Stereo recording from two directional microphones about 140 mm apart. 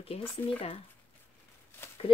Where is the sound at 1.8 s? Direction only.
15° left (ahead or behind).